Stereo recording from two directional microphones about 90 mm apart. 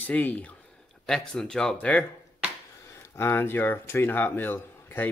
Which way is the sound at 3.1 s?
25° left (ahead or behind).